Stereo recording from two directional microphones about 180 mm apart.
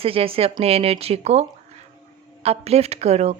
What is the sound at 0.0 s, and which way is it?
A woman's voice, 30° right (ahead or behind).